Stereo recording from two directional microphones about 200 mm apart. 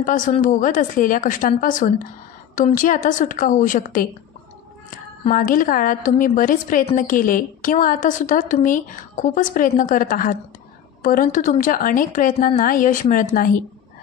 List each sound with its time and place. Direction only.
0.0 s a woman's voice: 40° left (ahead or behind)
5.3 s a woman's voice: 45° left (ahead or behind)